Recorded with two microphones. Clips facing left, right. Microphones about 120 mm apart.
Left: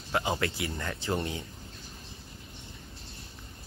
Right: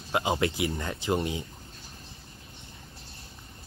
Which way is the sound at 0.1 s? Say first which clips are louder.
Right 3 dB; 20° right (ahead or behind).